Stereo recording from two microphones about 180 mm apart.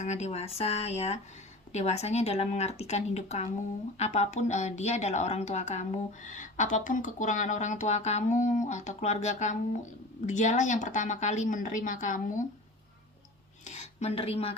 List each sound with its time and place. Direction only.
0.0 s a woman's voice: 40° left (ahead or behind)
13.7 s speech: 35° left (ahead or behind)